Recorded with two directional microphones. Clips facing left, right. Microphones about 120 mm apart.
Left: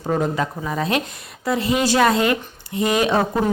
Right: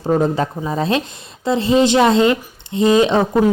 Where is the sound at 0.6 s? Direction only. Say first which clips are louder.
Right 3 dB; 30° right (ahead or behind).